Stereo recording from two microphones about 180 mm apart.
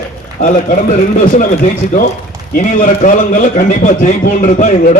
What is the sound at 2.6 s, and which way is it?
A man's voice, 45° left (ahead or behind).